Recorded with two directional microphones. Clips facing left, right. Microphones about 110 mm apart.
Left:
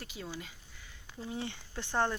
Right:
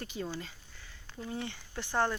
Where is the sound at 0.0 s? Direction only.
5° left (ahead or behind).